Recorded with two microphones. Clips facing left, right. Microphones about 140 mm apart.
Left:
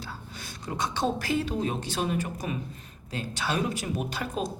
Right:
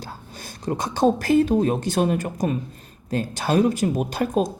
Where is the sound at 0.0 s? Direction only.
40° right (ahead or behind).